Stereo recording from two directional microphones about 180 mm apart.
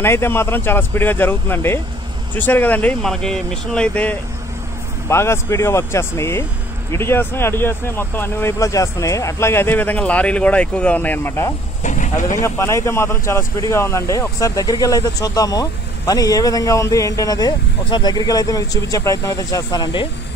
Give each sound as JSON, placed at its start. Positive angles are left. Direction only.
{"t": 0.0, "sound": "speech", "side_deg": 15}
{"t": 11.8, "sound": "speech", "side_deg": 45}
{"t": 12.4, "sound": "speech", "side_deg": 15}